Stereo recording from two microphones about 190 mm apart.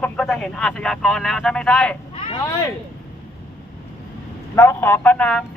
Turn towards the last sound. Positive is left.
turn(degrees=5)  # may be behind; listen again after turning